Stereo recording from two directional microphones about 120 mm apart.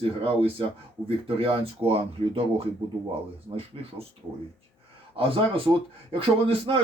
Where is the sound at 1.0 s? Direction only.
50° right (ahead or behind).